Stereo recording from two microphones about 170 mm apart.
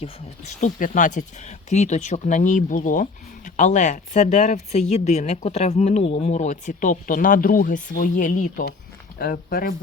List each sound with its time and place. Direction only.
0.0 s speech: 45° left (ahead or behind); by 9.7 s 60° left (ahead or behind)